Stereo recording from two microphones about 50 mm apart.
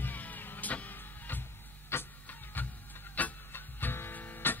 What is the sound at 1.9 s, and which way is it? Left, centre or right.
Music, left.